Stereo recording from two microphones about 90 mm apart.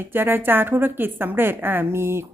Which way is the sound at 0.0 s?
25° right (ahead or behind).